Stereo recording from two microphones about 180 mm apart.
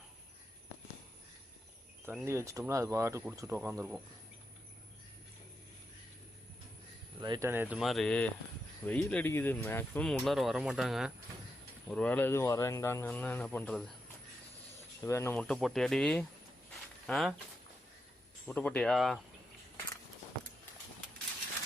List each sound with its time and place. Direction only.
2.2 s speech: 15° right (ahead or behind)
7.2 s speech: 20° right (ahead or behind); by 13.9 s 5° left (ahead or behind)
15.0 s speech: 15° left (ahead or behind); by 17.3 s centre (ahead or behind)
18.4 s speech: 5° left (ahead or behind)